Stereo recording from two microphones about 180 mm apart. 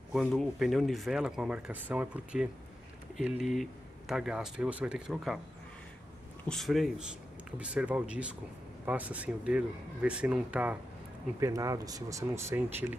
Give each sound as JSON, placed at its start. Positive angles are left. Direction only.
{"t": 0.1, "sound": "speech", "side_deg": 0}
{"t": 6.4, "sound": "speech", "side_deg": 0}
{"t": 11.3, "sound": "speech", "side_deg": -20}